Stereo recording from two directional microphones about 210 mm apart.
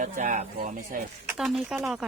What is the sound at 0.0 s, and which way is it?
Speech, 35° right (ahead or behind).